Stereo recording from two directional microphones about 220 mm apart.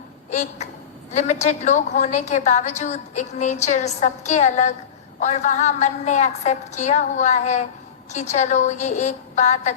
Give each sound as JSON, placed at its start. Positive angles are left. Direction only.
{"t": 0.3, "sound": "a woman's voice", "side_deg": 30}